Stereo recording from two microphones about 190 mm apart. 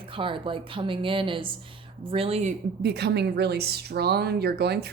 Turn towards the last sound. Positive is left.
turn(degrees=-60)  # may be behind; listen again after turning